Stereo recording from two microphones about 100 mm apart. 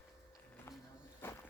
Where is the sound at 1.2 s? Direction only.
25° left (ahead or behind).